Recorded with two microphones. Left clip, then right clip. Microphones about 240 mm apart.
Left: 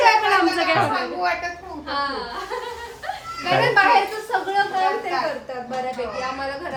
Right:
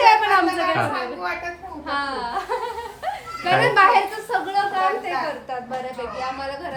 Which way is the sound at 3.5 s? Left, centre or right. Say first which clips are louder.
Right 1 dB; right.